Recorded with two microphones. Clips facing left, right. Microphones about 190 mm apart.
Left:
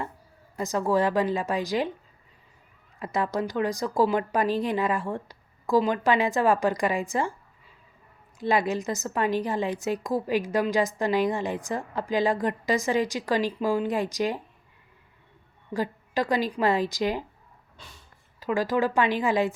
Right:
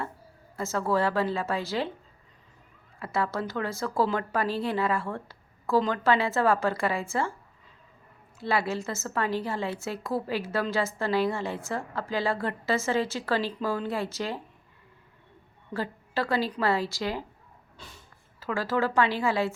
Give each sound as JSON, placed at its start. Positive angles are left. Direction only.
{"t": 0.5, "sound": "a woman's voice", "side_deg": 15}
{"t": 3.0, "sound": "a woman's voice", "side_deg": 20}
{"t": 8.4, "sound": "a woman's voice", "side_deg": 20}
{"t": 15.7, "sound": "a woman's voice", "side_deg": 15}
{"t": 18.3, "sound": "a woman's voice", "side_deg": 15}